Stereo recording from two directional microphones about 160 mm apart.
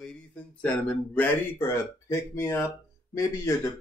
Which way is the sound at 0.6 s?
10° left (ahead or behind).